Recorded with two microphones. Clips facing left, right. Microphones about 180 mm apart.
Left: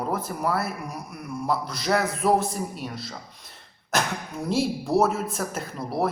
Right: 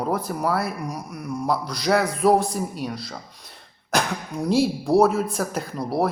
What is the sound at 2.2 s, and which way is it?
Speech, 30° right (ahead or behind).